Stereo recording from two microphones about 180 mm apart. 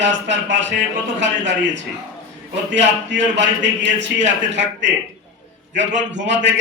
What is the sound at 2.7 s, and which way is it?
A man's voice, 80° right.